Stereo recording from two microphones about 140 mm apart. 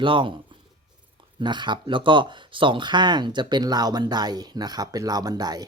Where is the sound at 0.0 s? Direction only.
35° right (ahead or behind).